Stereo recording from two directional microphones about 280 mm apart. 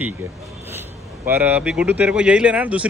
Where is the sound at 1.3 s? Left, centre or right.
Centre.